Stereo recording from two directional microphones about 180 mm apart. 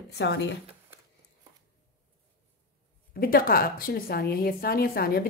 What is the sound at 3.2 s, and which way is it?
A woman's voice, 55° left (ahead or behind).